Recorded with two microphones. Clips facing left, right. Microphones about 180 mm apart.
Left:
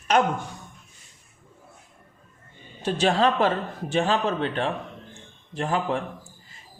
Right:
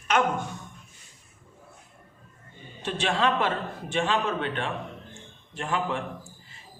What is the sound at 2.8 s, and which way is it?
A man's voice, 40° left (ahead or behind).